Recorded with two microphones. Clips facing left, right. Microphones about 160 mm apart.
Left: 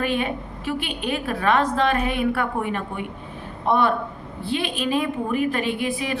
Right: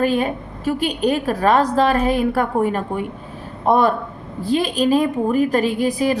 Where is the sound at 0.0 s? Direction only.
40° right (ahead or behind).